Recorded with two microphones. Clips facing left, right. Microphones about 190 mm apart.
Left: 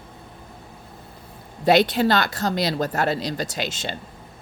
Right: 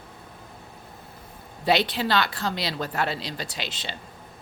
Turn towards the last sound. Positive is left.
turn(degrees=45)  # may be behind; listen again after turning